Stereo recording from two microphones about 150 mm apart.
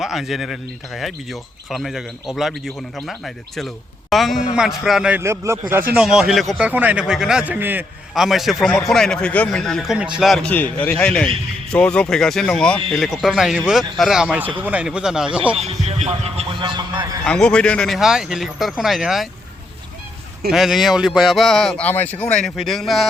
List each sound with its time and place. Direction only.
0.0 s speech: centre (ahead or behind)
5.2 s a man's voice: 20° right (ahead or behind)
5.9 s speech: 5° right (ahead or behind)
6.7 s a man's voice: 10° right (ahead or behind)
8.1 s a man's voice: centre (ahead or behind)
15.5 s speech: 45° right (ahead or behind); by 17.2 s 30° right (ahead or behind)
17.2 s speech: 5° left (ahead or behind)
20.5 s speech: centre (ahead or behind)